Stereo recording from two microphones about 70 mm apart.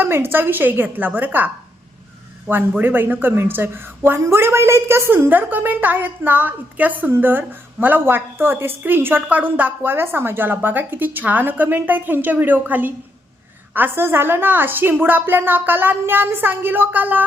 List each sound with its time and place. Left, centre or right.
0.0 s a woman's voice: right
2.5 s a woman's voice: right